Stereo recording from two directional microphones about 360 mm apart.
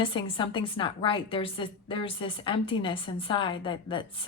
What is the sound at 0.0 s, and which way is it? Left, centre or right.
A woman's voice, centre.